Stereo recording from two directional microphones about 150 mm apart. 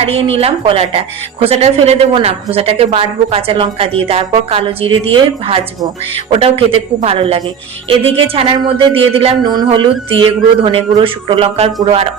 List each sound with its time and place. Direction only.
0.0 s a woman's voice: 40° right (ahead or behind)